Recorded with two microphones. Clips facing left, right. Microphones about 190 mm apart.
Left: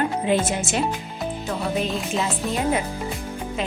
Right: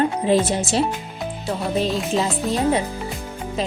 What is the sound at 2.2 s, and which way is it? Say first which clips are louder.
Speech: right 2 dB; 35° right (ahead or behind).